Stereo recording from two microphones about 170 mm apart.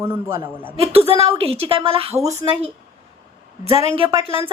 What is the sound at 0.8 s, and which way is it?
Speech, 35° right (ahead or behind).